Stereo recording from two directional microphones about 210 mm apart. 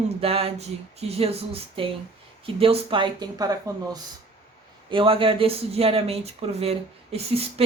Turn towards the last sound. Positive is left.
turn(degrees=-30)  # may be behind; listen again after turning